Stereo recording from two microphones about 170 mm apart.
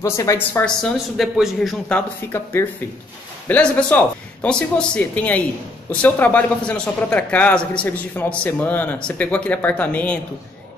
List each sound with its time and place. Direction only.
0.0 s a man's voice: 15° left (ahead or behind)
1.1 s a man's voice: centre (ahead or behind)